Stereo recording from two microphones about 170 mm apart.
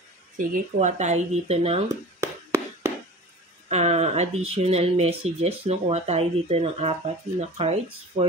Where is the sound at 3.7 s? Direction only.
40° right (ahead or behind).